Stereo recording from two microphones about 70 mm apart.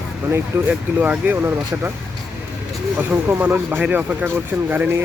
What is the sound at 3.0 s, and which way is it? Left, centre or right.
Speech, right.